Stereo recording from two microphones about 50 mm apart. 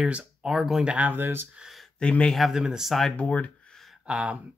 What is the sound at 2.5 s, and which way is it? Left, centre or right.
Speech, centre.